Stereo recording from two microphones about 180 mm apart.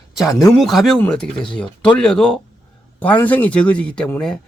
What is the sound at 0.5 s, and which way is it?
Speech, centre (ahead or behind).